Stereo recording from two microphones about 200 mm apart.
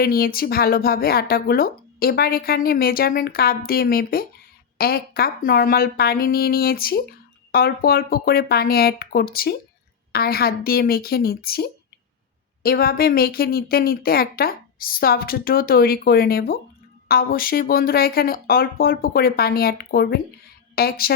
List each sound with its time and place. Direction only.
0.0 s speech: 50° left (ahead or behind)